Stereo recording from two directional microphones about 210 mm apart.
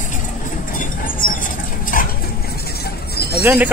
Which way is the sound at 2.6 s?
50° left (ahead or behind).